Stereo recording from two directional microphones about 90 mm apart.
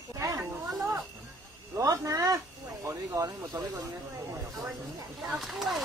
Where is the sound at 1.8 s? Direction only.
35° right (ahead or behind).